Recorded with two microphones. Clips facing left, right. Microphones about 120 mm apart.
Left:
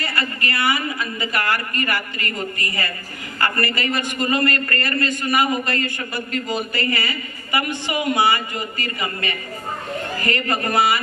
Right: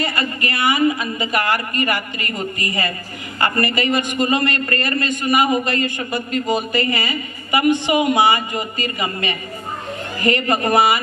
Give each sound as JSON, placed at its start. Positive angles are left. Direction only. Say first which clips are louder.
{"t": 0.0, "sound": "a man's voice", "louder": "right 3 dB", "side_deg": -20}